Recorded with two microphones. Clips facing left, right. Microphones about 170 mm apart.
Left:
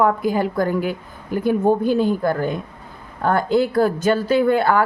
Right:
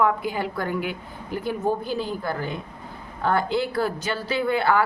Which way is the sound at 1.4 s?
55° left (ahead or behind).